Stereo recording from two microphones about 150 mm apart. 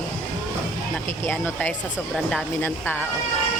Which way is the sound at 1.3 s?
15° left (ahead or behind).